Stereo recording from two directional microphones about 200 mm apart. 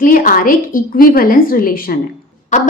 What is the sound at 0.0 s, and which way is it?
A woman's voice, 45° left (ahead or behind).